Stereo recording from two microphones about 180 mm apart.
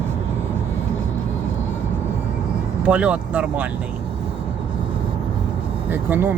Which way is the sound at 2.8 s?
5° right (ahead or behind).